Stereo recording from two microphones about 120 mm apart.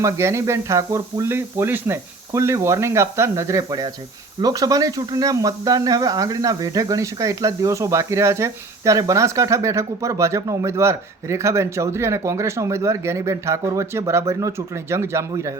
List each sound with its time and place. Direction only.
0.0 s speech: 25° right (ahead or behind)